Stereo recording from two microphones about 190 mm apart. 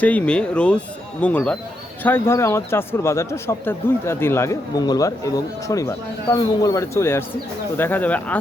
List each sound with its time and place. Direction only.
0.0 s speech: 5° left (ahead or behind)